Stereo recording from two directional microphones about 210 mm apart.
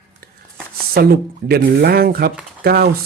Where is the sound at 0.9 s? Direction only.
45° right (ahead or behind).